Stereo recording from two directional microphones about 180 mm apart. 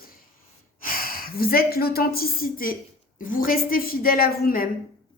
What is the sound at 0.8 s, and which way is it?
A woman's voice, 50° left (ahead or behind).